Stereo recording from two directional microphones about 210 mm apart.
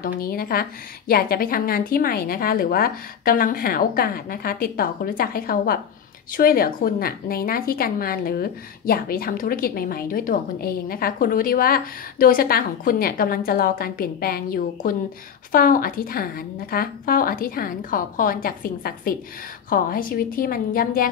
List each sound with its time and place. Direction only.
0.0 s a woman's voice: 45° left (ahead or behind)